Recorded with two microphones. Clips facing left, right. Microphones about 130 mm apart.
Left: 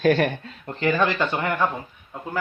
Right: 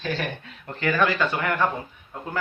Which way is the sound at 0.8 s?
25° left (ahead or behind).